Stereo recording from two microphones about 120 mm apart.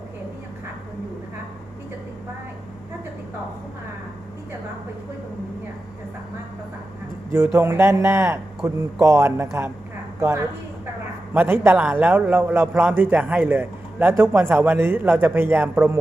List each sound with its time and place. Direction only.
7.3 s a woman's voice: 20° right (ahead or behind)